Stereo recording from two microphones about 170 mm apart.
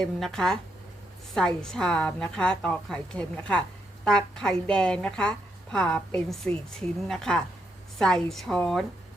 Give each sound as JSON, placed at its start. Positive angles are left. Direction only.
{"t": 0.0, "sound": "a woman's voice", "side_deg": 5}